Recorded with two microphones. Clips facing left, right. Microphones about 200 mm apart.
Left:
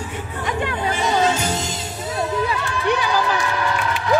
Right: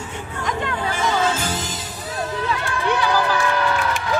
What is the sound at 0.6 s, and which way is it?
Music, 20° left (ahead or behind).